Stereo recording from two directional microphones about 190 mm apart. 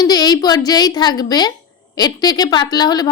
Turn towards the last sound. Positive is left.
turn(degrees=20)  # may be behind; listen again after turning